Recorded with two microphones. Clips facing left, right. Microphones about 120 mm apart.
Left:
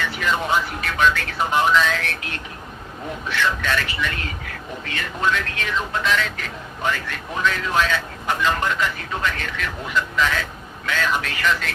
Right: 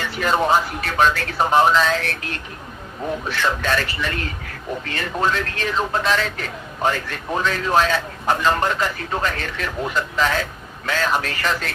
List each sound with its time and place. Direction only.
0.0 s speech: 40° right (ahead or behind)